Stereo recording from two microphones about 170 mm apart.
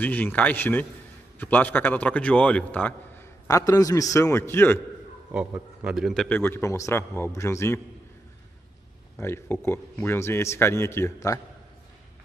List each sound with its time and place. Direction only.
0.0 s a man's voice: 10° left (ahead or behind)
5.3 s a man's voice: 10° right (ahead or behind)
6.2 s a man's voice: 10° left (ahead or behind)
9.2 s a man's voice: 15° left (ahead or behind)